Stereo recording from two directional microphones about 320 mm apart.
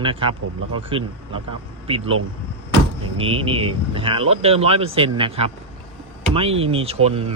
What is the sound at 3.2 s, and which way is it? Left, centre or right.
Speech, centre.